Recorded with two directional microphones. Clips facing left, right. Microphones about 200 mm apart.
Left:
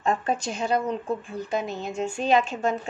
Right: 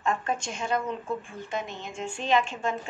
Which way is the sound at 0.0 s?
35° left (ahead or behind).